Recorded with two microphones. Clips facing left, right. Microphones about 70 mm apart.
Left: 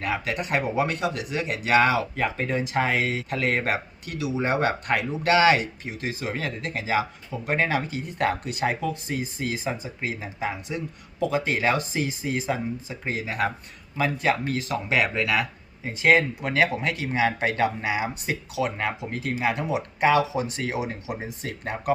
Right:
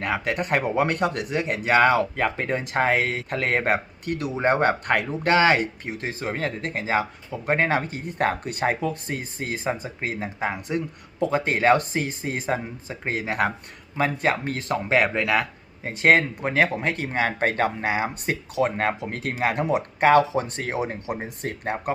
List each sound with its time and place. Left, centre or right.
0.0 s speech: right
13.9 s speech: right
16.4 s speech: right